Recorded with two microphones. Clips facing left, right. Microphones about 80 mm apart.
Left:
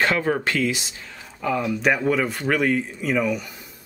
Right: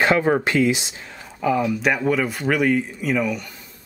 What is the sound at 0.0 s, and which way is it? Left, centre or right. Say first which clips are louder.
Speech: right 4 dB; centre.